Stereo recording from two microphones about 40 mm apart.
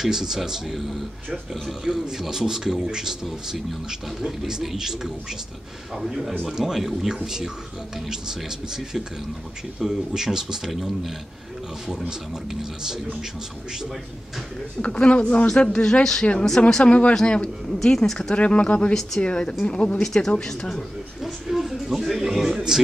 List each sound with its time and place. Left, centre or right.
0.0 s a man's voice: centre
4.2 s a man's voice: centre
14.8 s speech: left
16.6 s speech: left
17.1 s speech: centre
18.3 s speech: left
20.0 s speech: centre
21.2 s a sound: centre